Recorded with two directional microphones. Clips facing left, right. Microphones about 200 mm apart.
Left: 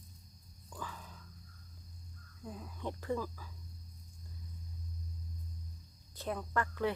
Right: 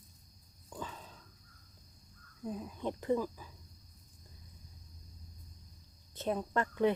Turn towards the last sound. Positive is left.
turn(degrees=-20)  # may be behind; listen again after turning